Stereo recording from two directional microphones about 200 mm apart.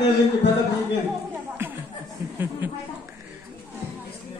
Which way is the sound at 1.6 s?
10° right (ahead or behind).